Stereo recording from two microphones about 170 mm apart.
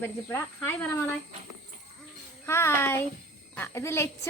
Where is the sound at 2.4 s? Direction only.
15° left (ahead or behind).